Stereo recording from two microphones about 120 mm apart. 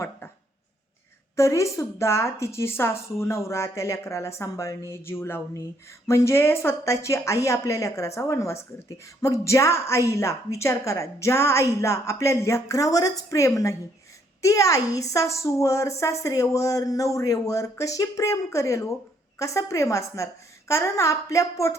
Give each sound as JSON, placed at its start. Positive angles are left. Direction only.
{"t": 1.4, "sound": "a woman's voice", "side_deg": 25}